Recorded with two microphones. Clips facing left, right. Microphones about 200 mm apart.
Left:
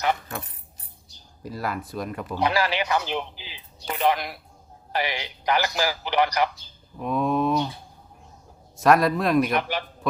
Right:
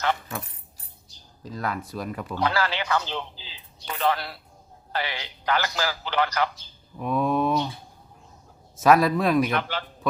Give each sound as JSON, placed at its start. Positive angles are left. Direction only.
{"t": 1.5, "sound": "speech", "side_deg": 5}
{"t": 2.3, "sound": "speech", "side_deg": 15}
{"t": 7.0, "sound": "a sound", "side_deg": 0}
{"t": 8.7, "sound": "speech", "side_deg": 0}
{"t": 9.5, "sound": "speech", "side_deg": 15}